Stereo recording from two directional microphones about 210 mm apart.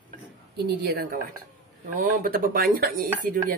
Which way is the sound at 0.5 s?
45° right (ahead or behind).